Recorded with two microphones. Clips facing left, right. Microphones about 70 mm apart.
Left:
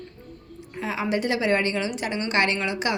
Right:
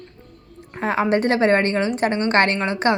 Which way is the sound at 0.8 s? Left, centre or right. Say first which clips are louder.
Right 7 dB; right.